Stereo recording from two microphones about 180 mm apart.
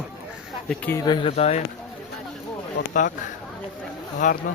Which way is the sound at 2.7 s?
45° left (ahead or behind).